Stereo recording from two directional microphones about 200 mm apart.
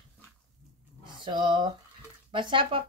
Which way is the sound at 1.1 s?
25° right (ahead or behind).